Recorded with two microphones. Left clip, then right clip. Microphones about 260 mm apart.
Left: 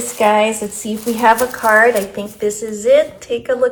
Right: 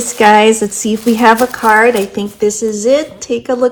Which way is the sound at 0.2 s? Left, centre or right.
Right.